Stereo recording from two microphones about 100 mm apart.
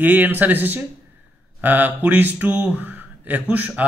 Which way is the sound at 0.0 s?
20° right (ahead or behind).